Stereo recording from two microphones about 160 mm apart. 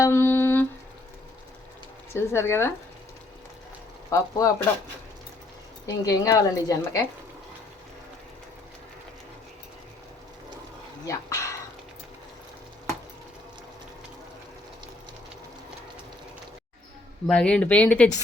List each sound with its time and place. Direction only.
0.0 s a sound: 15° left (ahead or behind)
2.1 s speech: 15° left (ahead or behind)
4.1 s a woman's voice: 20° left (ahead or behind)
5.8 s a woman's voice: 20° left (ahead or behind)
11.0 s speech: 20° left (ahead or behind)
17.2 s speech: 5° left (ahead or behind)